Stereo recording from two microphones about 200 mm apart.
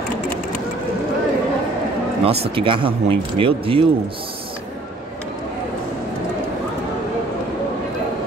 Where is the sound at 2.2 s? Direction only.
25° right (ahead or behind).